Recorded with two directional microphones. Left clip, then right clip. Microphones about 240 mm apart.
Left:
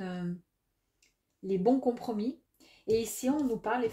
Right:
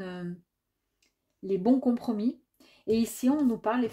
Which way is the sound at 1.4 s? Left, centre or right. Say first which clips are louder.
Right 1 dB; right.